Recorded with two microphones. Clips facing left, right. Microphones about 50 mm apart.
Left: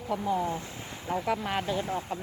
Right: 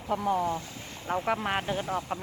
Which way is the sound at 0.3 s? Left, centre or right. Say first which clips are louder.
Right 2 dB; right.